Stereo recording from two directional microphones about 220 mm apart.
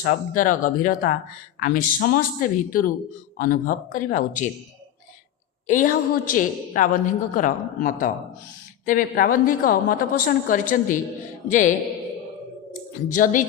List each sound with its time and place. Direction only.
0.0 s a woman's voice: 40° left (ahead or behind)
5.6 s a woman's voice: 35° left (ahead or behind)
13.1 s a woman's voice: 35° left (ahead or behind)